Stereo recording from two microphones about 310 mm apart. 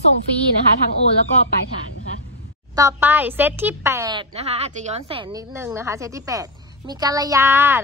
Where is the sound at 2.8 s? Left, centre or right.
Centre.